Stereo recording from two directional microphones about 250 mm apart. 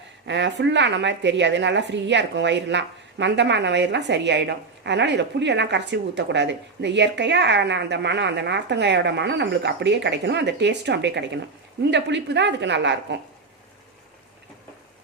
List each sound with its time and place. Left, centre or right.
0.3 s a woman's voice: right